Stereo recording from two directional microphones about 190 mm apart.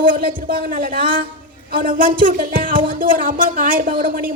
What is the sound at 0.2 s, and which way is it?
Speech, 50° right (ahead or behind).